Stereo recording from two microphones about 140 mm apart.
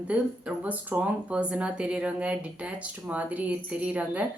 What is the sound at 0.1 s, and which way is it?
Speech, 10° right (ahead or behind).